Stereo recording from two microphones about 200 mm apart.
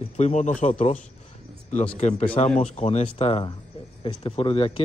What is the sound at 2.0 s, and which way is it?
A man's voice, 35° left (ahead or behind).